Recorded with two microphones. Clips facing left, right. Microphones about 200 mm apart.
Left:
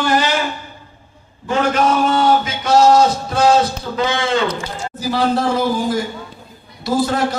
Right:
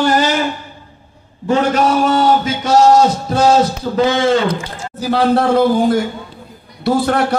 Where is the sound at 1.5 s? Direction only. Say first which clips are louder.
Right 2 dB; 40° right (ahead or behind).